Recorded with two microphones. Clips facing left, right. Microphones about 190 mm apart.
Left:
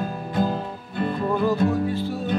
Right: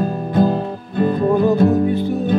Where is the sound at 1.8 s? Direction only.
20° right (ahead or behind).